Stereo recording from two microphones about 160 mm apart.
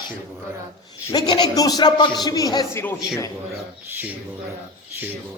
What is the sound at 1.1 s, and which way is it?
A man's voice, 25° left (ahead or behind).